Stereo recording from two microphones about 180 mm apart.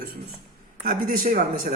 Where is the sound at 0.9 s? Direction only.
55° right (ahead or behind).